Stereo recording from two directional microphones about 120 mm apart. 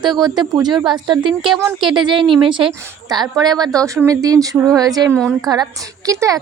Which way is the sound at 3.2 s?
35° right (ahead or behind).